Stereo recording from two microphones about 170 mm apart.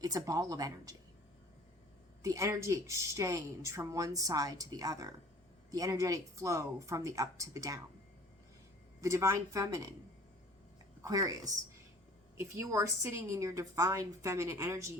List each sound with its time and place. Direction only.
0.0 s speech: 20° right (ahead or behind)
2.2 s speech: 20° right (ahead or behind)
9.0 s a woman's voice: 15° right (ahead or behind)
11.0 s a woman's voice: 20° right (ahead or behind)